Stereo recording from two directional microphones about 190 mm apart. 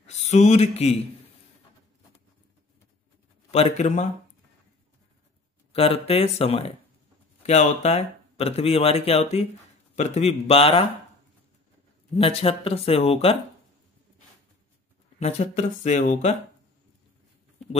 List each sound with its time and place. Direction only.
0.0 s speech: 35° left (ahead or behind)
3.5 s speech: 35° left (ahead or behind)
5.7 s speech: 30° left (ahead or behind)
12.2 s speech: 30° left (ahead or behind)
15.1 s speech: 35° left (ahead or behind)